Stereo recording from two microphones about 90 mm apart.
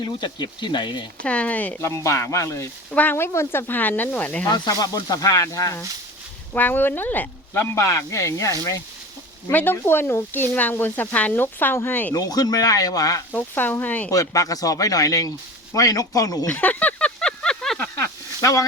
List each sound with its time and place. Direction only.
0.0 s speech: 55° left (ahead or behind)
1.2 s speech: 15° left (ahead or behind)
1.8 s speech: 30° left (ahead or behind)
2.9 s speech: 20° left (ahead or behind)
4.4 s speech: 50° left (ahead or behind)
6.5 s speech: 20° left (ahead or behind); by 8.8 s 35° left (ahead or behind)
9.5 s speech: 20° left (ahead or behind)
12.1 s speech: 45° left (ahead or behind)
13.3 s speech: 20° left (ahead or behind)
14.1 s speech: 40° left (ahead or behind)
16.5 s a sound: 15° left (ahead or behind)
17.7 s a sound: 30° left (ahead or behind)